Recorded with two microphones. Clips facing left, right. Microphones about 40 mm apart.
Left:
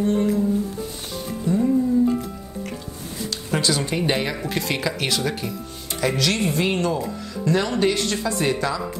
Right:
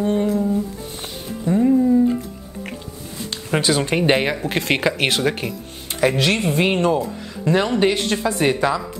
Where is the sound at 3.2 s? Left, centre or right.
Right.